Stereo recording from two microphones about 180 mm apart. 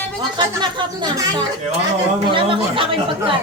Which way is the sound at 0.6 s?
25° right (ahead or behind).